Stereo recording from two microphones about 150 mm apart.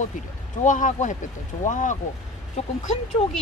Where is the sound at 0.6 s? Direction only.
55° left (ahead or behind).